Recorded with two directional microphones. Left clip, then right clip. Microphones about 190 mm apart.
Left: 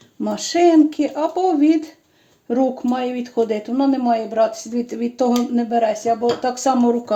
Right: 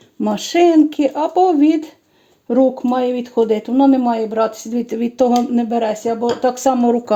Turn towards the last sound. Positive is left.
turn(degrees=-40)  # may be behind; listen again after turning